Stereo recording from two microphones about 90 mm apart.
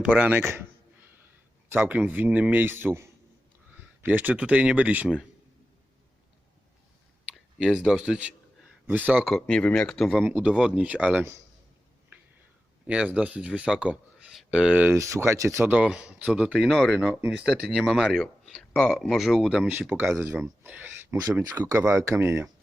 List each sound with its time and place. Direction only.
0.2 s a man's voice: 20° right (ahead or behind)
1.7 s a man's voice: 15° right (ahead or behind)
7.3 s speech: 5° right (ahead or behind)
9.2 s speech: 5° left (ahead or behind)
10.2 s speech: 15° right (ahead or behind)
12.8 s speech: 15° right (ahead or behind)
14.9 s speech: 35° right (ahead or behind)
15.7 s speech: 10° right (ahead or behind)
16.6 s speech: centre (ahead or behind)
17.2 s speech: 10° right (ahead or behind)
20.0 s a man's voice: 25° right (ahead or behind)